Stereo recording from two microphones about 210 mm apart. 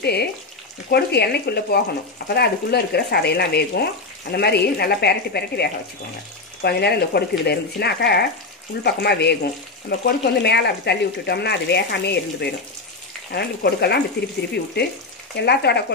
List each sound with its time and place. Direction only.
0.0 s speech: 50° left (ahead or behind)